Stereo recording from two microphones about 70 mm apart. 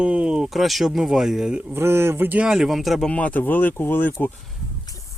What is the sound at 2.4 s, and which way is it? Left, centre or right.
Speech, centre.